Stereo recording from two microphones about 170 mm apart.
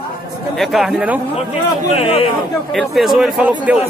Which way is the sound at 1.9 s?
35° left (ahead or behind).